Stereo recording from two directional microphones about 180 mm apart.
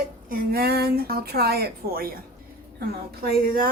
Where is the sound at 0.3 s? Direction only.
60° right (ahead or behind).